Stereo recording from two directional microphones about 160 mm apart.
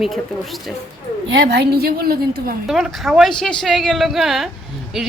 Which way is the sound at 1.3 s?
90° right.